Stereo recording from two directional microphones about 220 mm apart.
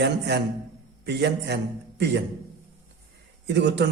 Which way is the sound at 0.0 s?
50° right (ahead or behind).